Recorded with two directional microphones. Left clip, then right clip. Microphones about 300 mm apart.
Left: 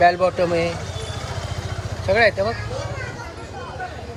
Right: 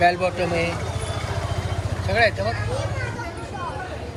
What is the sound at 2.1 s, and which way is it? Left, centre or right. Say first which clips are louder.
Speech: left 3 dB; left.